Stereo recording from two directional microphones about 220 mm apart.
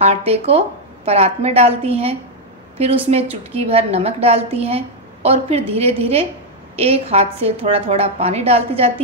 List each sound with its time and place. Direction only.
0.0 s a woman's voice: 30° right (ahead or behind)